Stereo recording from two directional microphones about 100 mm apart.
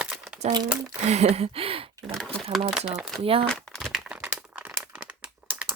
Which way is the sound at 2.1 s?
5° left (ahead or behind).